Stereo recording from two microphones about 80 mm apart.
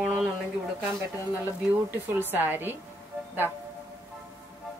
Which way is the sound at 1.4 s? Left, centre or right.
Right.